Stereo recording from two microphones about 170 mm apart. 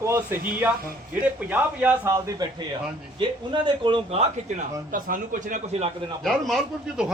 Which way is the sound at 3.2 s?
30° right (ahead or behind).